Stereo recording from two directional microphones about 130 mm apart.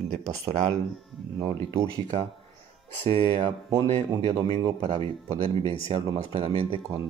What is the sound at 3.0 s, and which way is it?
Speech, 40° right (ahead or behind).